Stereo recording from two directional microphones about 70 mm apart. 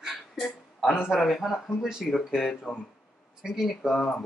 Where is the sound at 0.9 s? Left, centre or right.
Centre.